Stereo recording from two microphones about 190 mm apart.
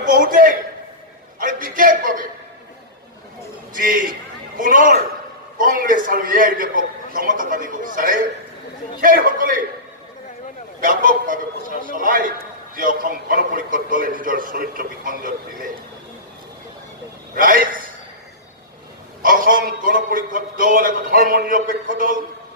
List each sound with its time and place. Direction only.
0.0 s a sound: 45° right (ahead or behind)
3.8 s a man's voice: 45° right (ahead or behind)
10.8 s a man's voice: 45° right (ahead or behind)
17.3 s a man's voice: 50° right (ahead or behind)
19.2 s a man's voice: 45° right (ahead or behind)